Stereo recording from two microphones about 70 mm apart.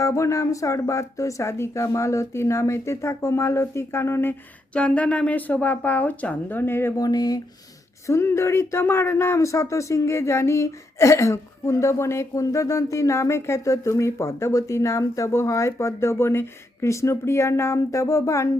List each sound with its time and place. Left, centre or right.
0.0 s speech: left
4.7 s speech: centre; by 6.9 s left
6.9 s speech: left
8.0 s speech: left